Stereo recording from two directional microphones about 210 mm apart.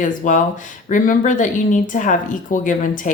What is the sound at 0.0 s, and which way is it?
Speech, 35° left (ahead or behind).